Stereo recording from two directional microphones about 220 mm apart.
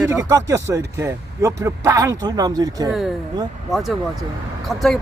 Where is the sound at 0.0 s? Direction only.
15° right (ahead or behind).